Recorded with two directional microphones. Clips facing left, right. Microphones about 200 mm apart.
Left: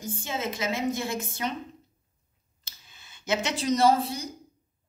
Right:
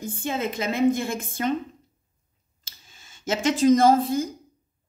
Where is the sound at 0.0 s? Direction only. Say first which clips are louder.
Right 4 dB; 55° right (ahead or behind).